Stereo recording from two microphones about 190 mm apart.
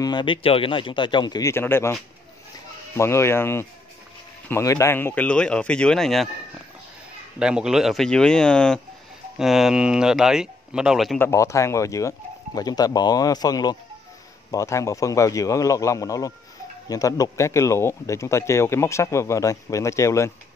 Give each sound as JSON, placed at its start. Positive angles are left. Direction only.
{"t": 0.0, "sound": "speech", "side_deg": 25}
{"t": 3.0, "sound": "speech", "side_deg": 15}
{"t": 7.3, "sound": "speech", "side_deg": -5}
{"t": 11.1, "sound": "speech", "side_deg": 15}